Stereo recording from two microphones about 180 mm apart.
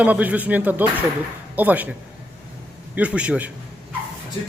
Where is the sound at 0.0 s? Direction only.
10° right (ahead or behind).